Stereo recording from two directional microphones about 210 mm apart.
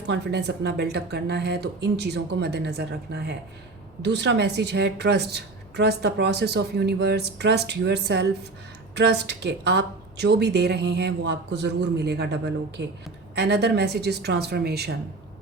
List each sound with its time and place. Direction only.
0.1 s a woman's voice: 55° right (ahead or behind)